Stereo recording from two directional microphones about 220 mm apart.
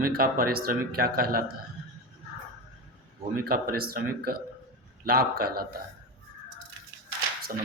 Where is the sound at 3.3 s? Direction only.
40° right (ahead or behind).